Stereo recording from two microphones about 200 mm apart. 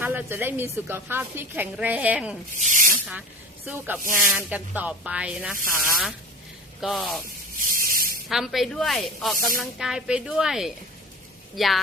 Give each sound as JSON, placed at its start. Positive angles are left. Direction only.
{"t": 0.0, "sound": "a woman's voice", "side_deg": -10}
{"t": 2.6, "sound": "speech", "side_deg": -40}
{"t": 3.7, "sound": "a woman's voice", "side_deg": -5}
{"t": 6.8, "sound": "speech", "side_deg": 0}
{"t": 7.6, "sound": "sanding", "side_deg": -45}
{"t": 8.3, "sound": "speech", "side_deg": 0}